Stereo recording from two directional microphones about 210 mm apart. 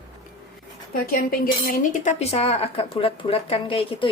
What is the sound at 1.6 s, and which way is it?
A woman's voice, 35° left (ahead or behind).